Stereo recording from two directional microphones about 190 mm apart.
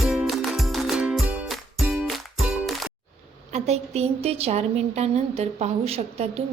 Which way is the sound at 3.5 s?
35° right (ahead or behind).